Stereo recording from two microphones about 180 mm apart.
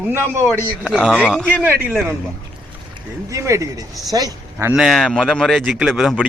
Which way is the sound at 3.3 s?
15° right (ahead or behind).